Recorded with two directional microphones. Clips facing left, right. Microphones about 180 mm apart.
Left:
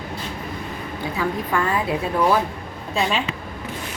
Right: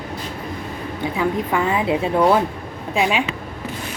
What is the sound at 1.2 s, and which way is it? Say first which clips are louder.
A woman's voice: right 3 dB; 15° right (ahead or behind).